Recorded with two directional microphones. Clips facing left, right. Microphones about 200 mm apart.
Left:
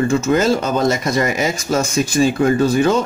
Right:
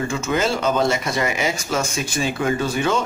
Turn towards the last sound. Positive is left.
turn(degrees=40)  # may be behind; listen again after turning